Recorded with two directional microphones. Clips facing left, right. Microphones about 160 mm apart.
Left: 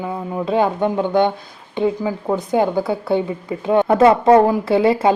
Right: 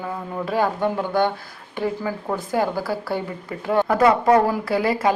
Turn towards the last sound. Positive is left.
turn(degrees=25)  # may be behind; listen again after turning